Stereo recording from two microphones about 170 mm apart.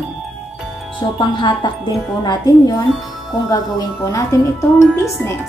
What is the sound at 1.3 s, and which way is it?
Speech, 25° left (ahead or behind).